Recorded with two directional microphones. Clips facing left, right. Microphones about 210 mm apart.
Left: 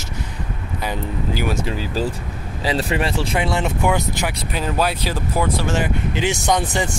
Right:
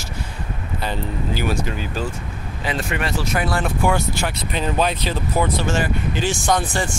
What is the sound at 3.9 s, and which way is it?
Speech, 10° left (ahead or behind).